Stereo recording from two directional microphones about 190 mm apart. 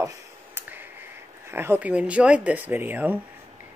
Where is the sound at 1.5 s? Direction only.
10° right (ahead or behind).